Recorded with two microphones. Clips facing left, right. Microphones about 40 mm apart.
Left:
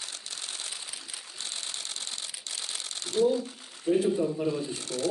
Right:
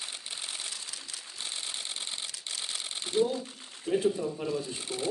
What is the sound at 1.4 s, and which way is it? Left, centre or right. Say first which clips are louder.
Typewriter: even; right.